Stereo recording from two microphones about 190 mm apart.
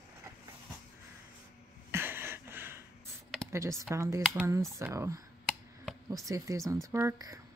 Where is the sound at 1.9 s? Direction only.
10° right (ahead or behind).